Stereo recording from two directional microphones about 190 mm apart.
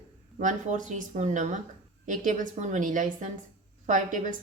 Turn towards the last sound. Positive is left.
turn(degrees=-45)  # may be behind; listen again after turning